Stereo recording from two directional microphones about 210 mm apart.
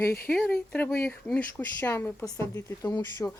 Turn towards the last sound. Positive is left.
turn(degrees=15)  # may be behind; listen again after turning